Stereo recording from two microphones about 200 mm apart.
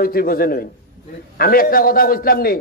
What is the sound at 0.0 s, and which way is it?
A man's voice, 45° left (ahead or behind).